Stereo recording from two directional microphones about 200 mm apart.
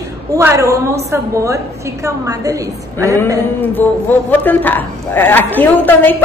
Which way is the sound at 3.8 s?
10° left (ahead or behind).